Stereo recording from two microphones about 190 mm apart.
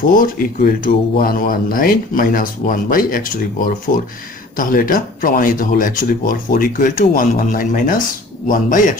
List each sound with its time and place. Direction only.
0.0 s speech: 50° left (ahead or behind)